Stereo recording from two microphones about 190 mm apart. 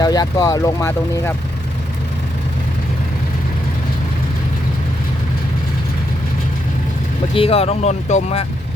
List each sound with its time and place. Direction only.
0.0 s speech: 20° left (ahead or behind)
7.3 s speech: 30° left (ahead or behind)